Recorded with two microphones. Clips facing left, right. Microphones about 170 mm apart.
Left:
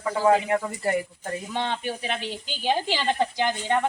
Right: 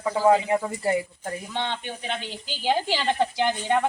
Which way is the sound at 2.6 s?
15° right (ahead or behind).